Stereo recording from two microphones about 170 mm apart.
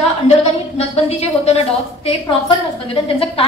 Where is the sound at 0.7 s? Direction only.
35° left (ahead or behind).